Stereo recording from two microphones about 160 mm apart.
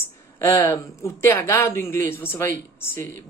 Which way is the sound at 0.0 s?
20° left (ahead or behind).